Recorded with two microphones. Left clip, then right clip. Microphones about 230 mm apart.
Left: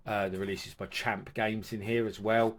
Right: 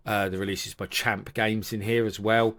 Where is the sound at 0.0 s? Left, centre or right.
Right.